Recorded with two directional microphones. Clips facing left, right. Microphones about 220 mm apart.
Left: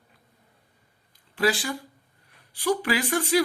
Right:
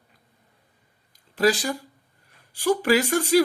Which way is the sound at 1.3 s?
40° right (ahead or behind).